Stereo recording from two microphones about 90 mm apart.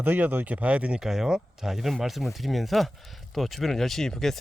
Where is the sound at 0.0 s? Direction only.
20° right (ahead or behind).